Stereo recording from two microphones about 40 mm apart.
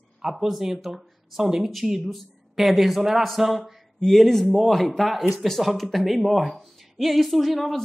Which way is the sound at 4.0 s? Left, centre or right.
Centre.